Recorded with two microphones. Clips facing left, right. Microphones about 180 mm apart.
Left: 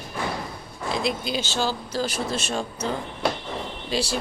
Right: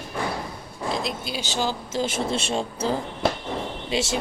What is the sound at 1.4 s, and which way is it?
Speech, 15° right (ahead or behind).